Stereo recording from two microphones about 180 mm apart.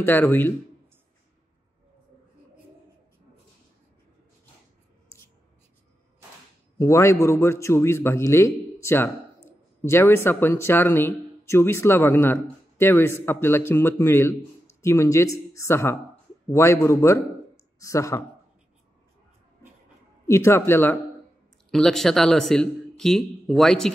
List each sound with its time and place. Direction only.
0.0 s speech: 10° left (ahead or behind)
6.8 s speech: 15° left (ahead or behind)
20.2 s speech: 15° left (ahead or behind)